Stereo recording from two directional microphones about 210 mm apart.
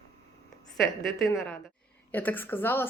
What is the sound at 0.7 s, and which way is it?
A woman's voice, centre (ahead or behind).